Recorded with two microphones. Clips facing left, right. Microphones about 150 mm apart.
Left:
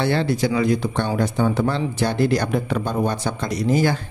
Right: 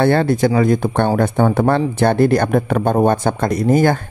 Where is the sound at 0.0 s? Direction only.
50° right (ahead or behind).